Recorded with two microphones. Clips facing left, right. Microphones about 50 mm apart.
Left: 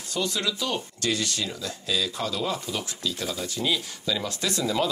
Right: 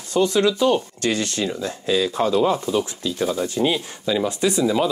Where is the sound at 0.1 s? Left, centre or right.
Right.